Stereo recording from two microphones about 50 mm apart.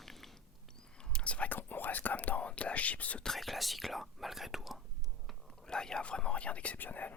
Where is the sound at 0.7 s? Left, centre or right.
Centre.